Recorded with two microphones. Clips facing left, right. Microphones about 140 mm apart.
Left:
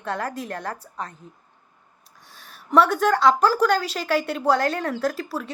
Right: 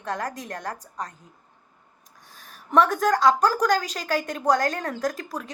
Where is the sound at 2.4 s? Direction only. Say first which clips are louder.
Left 2 dB; 40° right (ahead or behind).